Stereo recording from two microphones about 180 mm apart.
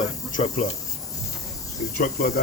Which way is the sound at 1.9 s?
60° left (ahead or behind).